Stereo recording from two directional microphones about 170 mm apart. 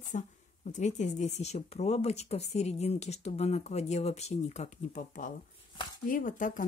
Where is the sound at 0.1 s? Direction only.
45° left (ahead or behind).